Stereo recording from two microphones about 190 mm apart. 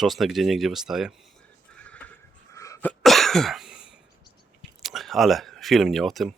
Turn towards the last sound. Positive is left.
turn(degrees=0)  # may be behind; listen again after turning